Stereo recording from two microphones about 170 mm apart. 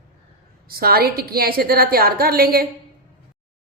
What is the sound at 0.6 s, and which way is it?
A woman's voice, 65° right (ahead or behind).